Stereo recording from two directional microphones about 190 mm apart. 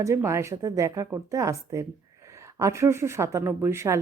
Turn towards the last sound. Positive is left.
turn(degrees=-15)  # may be behind; listen again after turning